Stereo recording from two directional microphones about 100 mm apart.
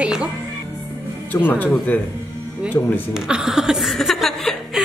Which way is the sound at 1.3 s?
15° left (ahead or behind).